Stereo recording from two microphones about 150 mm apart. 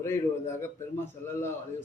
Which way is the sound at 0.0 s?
15° left (ahead or behind).